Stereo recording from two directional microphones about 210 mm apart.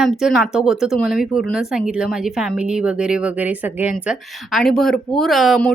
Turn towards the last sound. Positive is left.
turn(degrees=0)  # may be behind; listen again after turning